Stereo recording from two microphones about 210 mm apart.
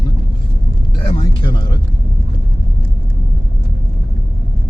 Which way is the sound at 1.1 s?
25° left (ahead or behind).